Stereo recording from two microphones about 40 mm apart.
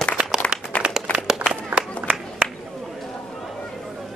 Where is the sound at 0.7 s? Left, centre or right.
Left.